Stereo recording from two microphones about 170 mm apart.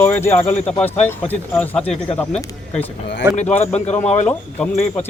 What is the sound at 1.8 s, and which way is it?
Speech, 35° left (ahead or behind).